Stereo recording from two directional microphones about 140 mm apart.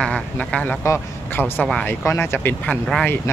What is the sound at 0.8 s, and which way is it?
Speech, 20° left (ahead or behind).